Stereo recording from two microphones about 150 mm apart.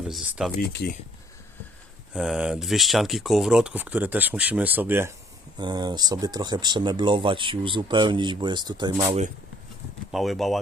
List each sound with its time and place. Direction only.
0.1 s speech: centre (ahead or behind)
2.1 s speech: 5° right (ahead or behind)
5.5 s speech: 30° right (ahead or behind)
10.1 s speech: centre (ahead or behind)